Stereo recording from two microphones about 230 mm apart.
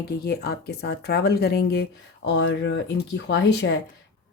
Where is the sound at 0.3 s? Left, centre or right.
Left.